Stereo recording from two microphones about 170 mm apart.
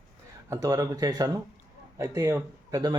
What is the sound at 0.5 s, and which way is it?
Speech, 20° right (ahead or behind).